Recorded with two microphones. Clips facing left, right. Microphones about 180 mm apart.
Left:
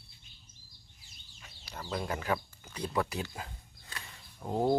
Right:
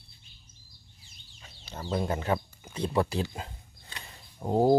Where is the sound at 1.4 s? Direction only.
25° right (ahead or behind).